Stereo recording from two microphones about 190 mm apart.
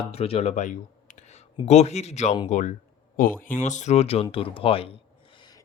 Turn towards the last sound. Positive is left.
turn(degrees=30)  # may be behind; listen again after turning